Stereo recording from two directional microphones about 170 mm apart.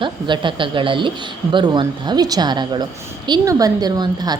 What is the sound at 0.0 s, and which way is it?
A woman's voice, 30° right (ahead or behind).